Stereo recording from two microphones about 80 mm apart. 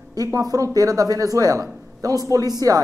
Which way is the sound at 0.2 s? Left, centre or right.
Right.